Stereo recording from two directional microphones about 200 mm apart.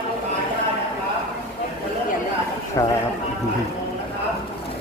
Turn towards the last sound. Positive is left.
turn(degrees=15)  # may be behind; listen again after turning